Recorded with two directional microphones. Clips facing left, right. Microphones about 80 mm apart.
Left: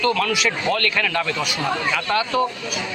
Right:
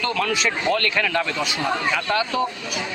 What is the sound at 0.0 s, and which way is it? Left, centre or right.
Speech, right.